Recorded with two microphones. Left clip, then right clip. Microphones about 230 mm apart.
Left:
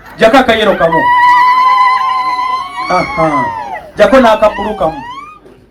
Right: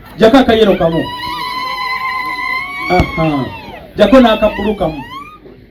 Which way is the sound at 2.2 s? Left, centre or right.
Right.